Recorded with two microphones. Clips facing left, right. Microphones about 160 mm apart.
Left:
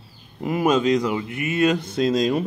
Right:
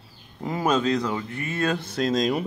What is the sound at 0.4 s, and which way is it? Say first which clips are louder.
Speech: left 4 dB; 15° left (ahead or behind).